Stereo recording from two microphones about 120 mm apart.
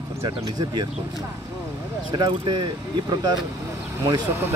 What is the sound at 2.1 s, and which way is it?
Speech, 40° right (ahead or behind).